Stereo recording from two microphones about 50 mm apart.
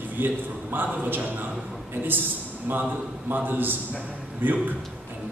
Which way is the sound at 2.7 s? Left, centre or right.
Right.